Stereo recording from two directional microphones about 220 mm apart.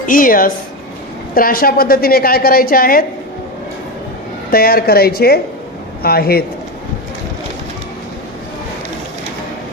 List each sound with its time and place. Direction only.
0.0 s a woman's voice: 40° left (ahead or behind)
4.5 s a woman's voice: 45° left (ahead or behind)